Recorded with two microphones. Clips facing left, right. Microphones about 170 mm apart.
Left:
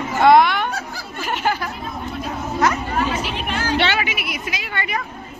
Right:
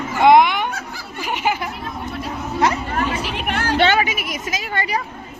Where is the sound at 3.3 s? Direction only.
65° right (ahead or behind); by 5.0 s 40° right (ahead or behind).